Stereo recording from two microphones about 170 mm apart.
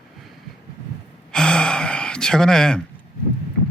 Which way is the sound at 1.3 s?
5° left (ahead or behind).